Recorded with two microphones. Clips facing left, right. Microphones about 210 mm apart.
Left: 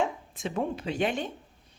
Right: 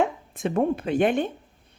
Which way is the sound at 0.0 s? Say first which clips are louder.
Right 5 dB; 55° right (ahead or behind).